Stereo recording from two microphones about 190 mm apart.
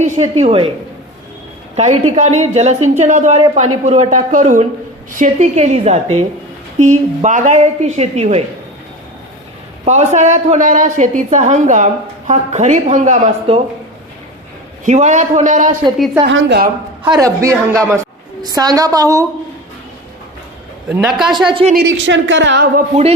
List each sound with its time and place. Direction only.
0.0 s a woman's voice: 35° right (ahead or behind)
1.7 s a woman's voice: 40° right (ahead or behind)
9.8 s a woman's voice: 35° right (ahead or behind)
14.8 s a woman's voice: 40° right (ahead or behind)
16.2 s a woman's voice: 65° right (ahead or behind)
17.0 s a woman's voice: 20° right (ahead or behind)
21.1 s speech: centre (ahead or behind)
21.5 s a woman's voice: 35° right (ahead or behind)
21.8 s a woman's voice: 75° right (ahead or behind)